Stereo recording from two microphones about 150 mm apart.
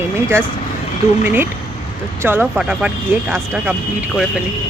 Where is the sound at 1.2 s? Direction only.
15° right (ahead or behind).